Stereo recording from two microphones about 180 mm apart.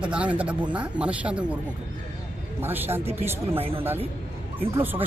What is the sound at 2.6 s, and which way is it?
Speech, 10° right (ahead or behind).